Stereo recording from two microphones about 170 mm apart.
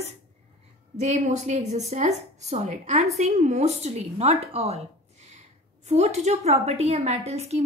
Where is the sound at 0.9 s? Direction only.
40° right (ahead or behind).